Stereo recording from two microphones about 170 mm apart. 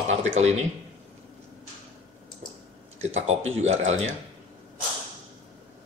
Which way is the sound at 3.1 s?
40° right (ahead or behind).